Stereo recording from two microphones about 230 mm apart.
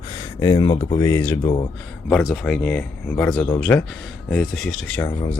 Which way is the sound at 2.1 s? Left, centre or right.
Centre.